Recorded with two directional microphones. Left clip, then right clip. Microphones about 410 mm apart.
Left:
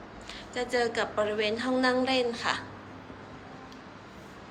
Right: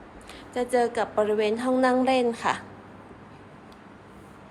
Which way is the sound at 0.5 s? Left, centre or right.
Centre.